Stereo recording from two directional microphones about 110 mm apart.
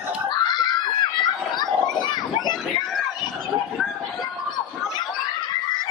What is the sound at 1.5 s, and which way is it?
Children playing, 40° left (ahead or behind).